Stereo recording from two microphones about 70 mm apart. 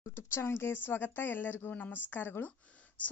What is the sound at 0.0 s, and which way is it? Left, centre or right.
A woman's voice, left.